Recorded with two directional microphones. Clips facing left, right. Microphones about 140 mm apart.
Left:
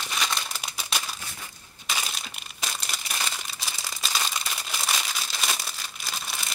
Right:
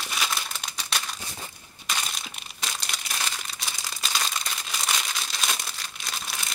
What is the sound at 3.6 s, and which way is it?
Crumpling, centre (ahead or behind).